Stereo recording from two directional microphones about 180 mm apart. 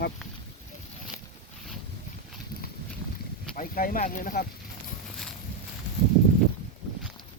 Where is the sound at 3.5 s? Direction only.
50° left (ahead or behind).